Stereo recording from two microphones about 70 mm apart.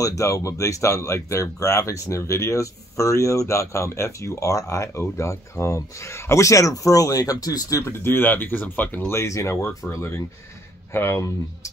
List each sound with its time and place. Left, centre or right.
0.0 s speech: left
8.0 s speech: left
9.0 s speech: left